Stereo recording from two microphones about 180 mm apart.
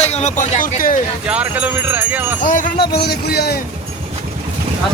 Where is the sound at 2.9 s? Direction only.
60° left (ahead or behind).